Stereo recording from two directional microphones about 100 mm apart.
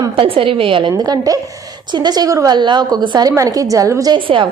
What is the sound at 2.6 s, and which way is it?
A woman's voice, 50° right (ahead or behind).